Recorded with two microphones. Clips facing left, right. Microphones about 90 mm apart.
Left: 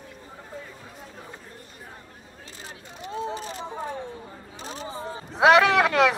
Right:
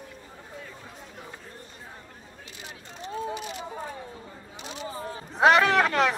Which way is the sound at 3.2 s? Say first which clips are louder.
Left 2 dB; 35° left (ahead or behind).